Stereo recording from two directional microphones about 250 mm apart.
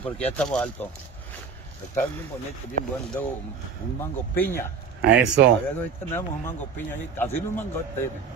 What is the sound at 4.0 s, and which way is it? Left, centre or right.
Speech, centre.